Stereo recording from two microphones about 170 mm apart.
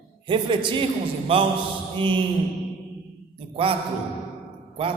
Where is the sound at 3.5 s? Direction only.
35° right (ahead or behind).